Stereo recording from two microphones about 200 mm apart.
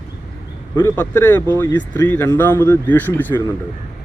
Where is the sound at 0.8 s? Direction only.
10° left (ahead or behind).